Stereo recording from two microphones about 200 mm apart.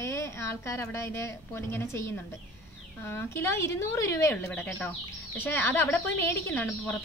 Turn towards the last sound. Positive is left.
turn(degrees=10)  # may be behind; listen again after turning